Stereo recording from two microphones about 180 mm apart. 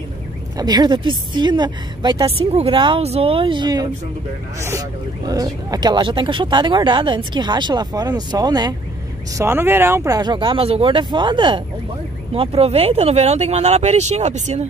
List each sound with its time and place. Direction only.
0.6 s speech: 25° right (ahead or behind); by 14.7 s 40° right (ahead or behind)